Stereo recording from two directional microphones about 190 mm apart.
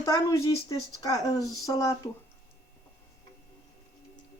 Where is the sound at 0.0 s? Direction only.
15° left (ahead or behind).